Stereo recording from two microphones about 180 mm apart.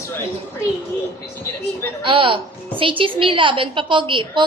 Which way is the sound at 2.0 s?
30° right (ahead or behind).